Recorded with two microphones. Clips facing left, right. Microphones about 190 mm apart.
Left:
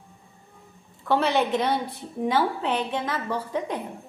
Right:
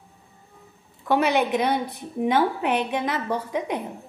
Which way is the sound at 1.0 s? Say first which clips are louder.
Right 1 dB; 15° right (ahead or behind).